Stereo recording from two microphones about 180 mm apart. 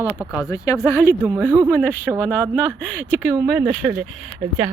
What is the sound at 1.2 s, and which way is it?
Speech, 10° right (ahead or behind).